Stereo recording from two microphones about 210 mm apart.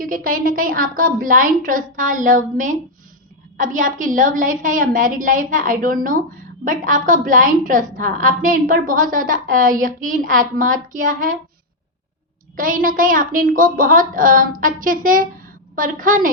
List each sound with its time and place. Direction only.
0.0 s a woman's voice: 40° right (ahead or behind)
12.5 s a woman's voice: 40° right (ahead or behind)